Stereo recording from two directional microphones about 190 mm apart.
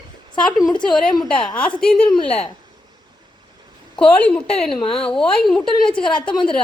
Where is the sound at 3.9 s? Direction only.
5° left (ahead or behind).